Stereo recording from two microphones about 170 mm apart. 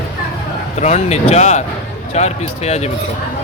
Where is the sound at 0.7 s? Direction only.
40° left (ahead or behind).